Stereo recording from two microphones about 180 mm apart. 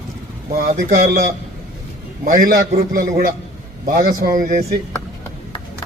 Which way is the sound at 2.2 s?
55° right (ahead or behind).